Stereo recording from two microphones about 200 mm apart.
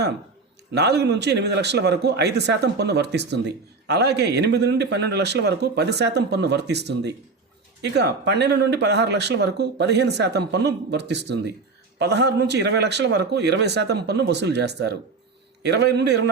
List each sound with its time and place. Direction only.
0.7 s a man's voice: 55° right (ahead or behind)